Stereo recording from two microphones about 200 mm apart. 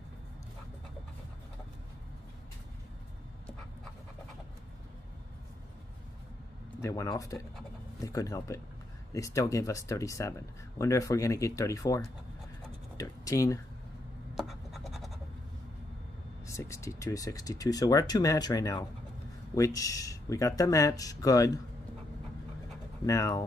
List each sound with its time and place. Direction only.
6.8 s speech: 15° left (ahead or behind)
14.3 s scratch: centre (ahead or behind)
16.4 s speech: 15° left (ahead or behind)
23.0 s speech: 15° left (ahead or behind)